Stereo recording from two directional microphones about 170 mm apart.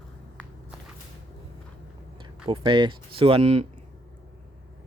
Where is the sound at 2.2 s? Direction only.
30° right (ahead or behind).